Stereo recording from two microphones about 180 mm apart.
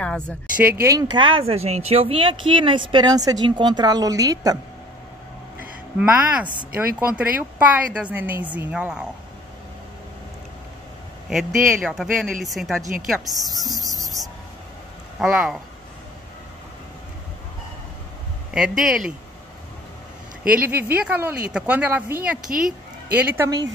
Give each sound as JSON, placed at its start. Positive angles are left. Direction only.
{"t": 0.6, "sound": "speech", "side_deg": -15}
{"t": 5.6, "sound": "a sound", "side_deg": -10}
{"t": 7.1, "sound": "a woman's voice", "side_deg": -10}
{"t": 11.2, "sound": "speech", "side_deg": -5}
{"t": 13.7, "sound": "cricket", "side_deg": -20}
{"t": 15.1, "sound": "speech", "side_deg": -5}
{"t": 18.5, "sound": "speech", "side_deg": -5}
{"t": 20.4, "sound": "a woman's voice", "side_deg": -10}